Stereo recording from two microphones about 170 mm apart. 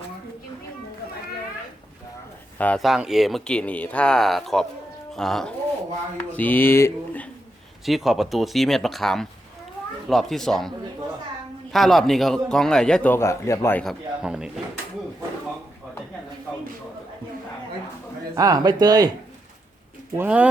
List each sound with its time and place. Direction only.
2.6 s speech: 10° left (ahead or behind)
2.8 s speech: centre (ahead or behind)
7.9 s speech: centre (ahead or behind)
11.7 s speech: centre (ahead or behind)
13.8 s speech: 5° right (ahead or behind)
18.3 s speech: 20° right (ahead or behind)
20.1 s speech: 10° right (ahead or behind)